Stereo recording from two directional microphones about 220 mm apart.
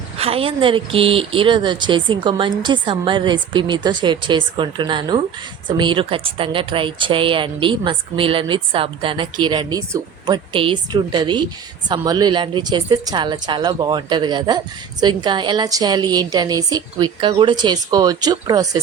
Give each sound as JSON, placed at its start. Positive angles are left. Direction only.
{"t": 0.2, "sound": "a woman's voice", "side_deg": -25}